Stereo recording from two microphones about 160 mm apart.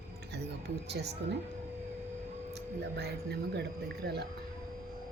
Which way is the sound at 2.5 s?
90° right.